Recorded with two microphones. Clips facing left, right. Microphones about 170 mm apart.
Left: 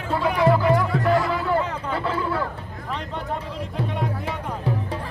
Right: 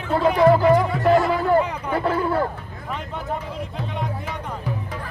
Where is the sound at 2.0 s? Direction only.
45° right (ahead or behind).